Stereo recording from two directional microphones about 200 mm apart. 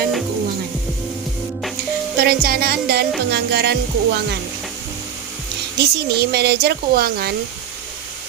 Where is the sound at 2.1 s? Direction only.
50° right (ahead or behind).